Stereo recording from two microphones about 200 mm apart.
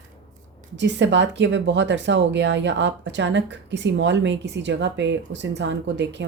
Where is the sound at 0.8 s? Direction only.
65° right (ahead or behind).